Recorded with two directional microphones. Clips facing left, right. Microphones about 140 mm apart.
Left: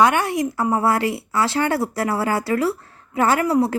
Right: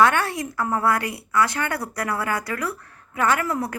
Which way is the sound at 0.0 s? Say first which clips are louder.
Left 2 dB; 20° left (ahead or behind).